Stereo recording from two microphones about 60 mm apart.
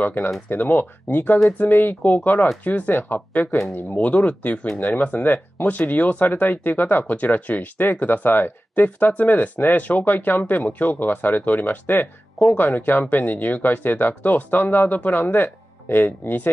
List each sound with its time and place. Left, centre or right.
0.0 s speech: left